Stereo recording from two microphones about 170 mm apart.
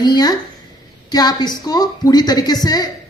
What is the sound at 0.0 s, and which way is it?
Speech, 25° left (ahead or behind).